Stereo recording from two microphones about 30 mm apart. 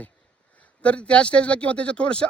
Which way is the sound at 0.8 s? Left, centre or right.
Left.